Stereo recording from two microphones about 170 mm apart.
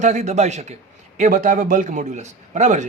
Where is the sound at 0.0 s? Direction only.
45° right (ahead or behind).